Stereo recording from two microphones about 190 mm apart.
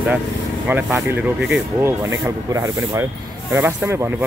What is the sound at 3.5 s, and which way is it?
Speech, 10° right (ahead or behind).